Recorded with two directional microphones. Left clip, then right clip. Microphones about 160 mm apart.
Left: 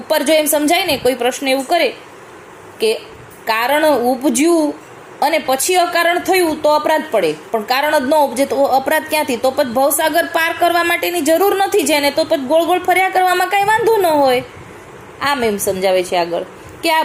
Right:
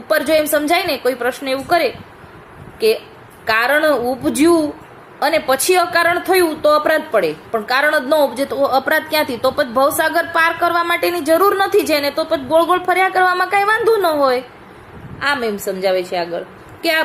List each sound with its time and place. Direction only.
0.1 s a woman's voice: 10° left (ahead or behind)
3.4 s a woman's voice: 15° left (ahead or behind)